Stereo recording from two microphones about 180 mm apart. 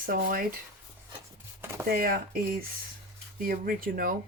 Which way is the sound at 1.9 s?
55° right (ahead or behind).